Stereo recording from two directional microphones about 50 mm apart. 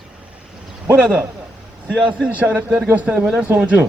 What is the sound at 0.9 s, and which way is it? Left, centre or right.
Speech, right.